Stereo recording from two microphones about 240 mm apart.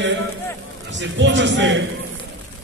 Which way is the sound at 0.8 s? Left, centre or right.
Right.